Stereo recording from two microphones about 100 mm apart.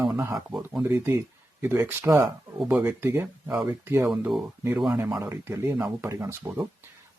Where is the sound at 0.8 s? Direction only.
25° right (ahead or behind).